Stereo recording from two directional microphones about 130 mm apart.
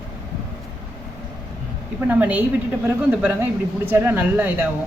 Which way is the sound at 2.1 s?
10° right (ahead or behind).